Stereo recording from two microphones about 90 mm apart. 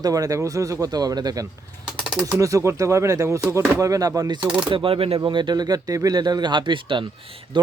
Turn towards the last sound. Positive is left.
turn(degrees=-60)  # may be behind; listen again after turning